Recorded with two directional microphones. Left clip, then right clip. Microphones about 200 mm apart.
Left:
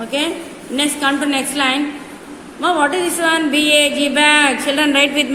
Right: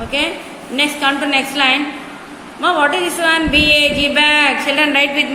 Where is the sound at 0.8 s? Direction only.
25° left (ahead or behind).